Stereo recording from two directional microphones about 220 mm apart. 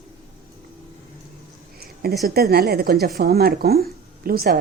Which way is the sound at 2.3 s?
45° right (ahead or behind).